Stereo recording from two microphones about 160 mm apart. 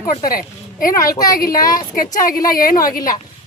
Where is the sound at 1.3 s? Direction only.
60° left (ahead or behind).